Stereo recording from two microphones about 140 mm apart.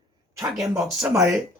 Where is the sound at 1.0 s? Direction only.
5° right (ahead or behind).